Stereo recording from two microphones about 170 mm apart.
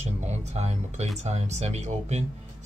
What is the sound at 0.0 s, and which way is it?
Speech, 40° right (ahead or behind).